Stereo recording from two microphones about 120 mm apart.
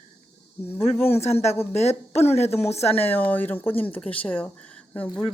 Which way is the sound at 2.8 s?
15° left (ahead or behind).